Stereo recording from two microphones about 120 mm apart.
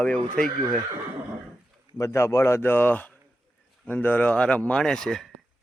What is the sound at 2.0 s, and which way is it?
Speech, 25° left (ahead or behind).